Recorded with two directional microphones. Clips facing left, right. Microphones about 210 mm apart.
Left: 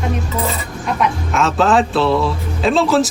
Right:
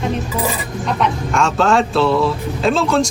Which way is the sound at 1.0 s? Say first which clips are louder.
Even; centre (ahead or behind).